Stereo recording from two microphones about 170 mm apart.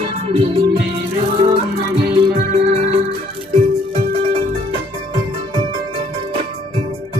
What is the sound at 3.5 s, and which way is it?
Music, 35° right (ahead or behind).